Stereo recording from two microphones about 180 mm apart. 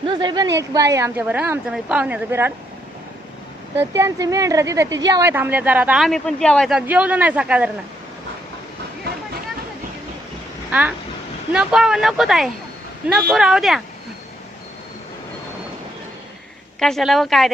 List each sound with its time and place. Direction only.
0.0 s a woman's voice: 25° right (ahead or behind)
3.8 s a woman's voice: 15° right (ahead or behind)
10.7 s speech: 10° right (ahead or behind)
16.8 s speech: centre (ahead or behind)